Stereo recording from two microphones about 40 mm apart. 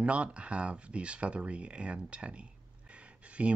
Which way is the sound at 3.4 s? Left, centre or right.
Right.